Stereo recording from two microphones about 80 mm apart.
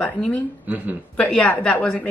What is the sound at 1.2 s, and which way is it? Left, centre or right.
Speech, centre.